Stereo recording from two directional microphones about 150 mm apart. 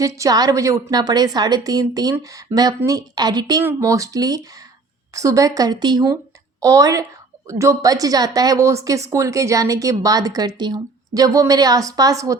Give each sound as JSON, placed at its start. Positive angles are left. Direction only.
{"t": 0.0, "sound": "a woman's voice", "side_deg": -20}